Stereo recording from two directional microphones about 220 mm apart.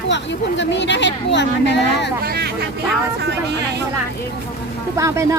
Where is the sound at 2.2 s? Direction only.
45° right (ahead or behind).